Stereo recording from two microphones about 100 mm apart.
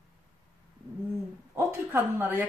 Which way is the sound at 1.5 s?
20° right (ahead or behind).